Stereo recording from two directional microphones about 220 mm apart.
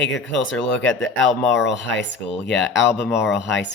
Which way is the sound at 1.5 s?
55° left (ahead or behind).